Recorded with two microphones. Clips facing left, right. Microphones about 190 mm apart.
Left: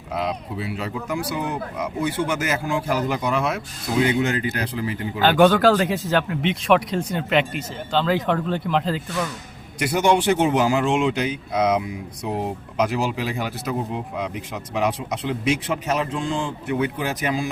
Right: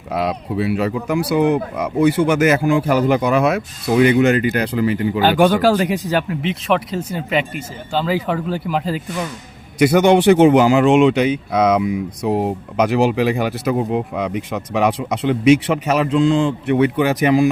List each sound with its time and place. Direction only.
0.1 s speech: 75° right (ahead or behind)
5.2 s speech: 10° right (ahead or behind)
6.4 s speech: centre (ahead or behind)
9.7 s speech: 75° right (ahead or behind)